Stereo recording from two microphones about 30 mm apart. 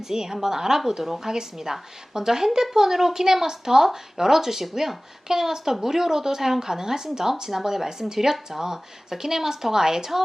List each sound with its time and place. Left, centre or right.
0.1 s speech: centre